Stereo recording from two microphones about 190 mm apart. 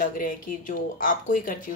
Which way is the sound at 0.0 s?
45° left (ahead or behind).